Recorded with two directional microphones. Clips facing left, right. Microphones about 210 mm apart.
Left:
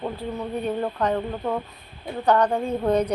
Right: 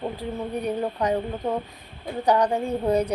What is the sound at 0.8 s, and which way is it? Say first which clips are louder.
A woman's voice: even; 15° right (ahead or behind).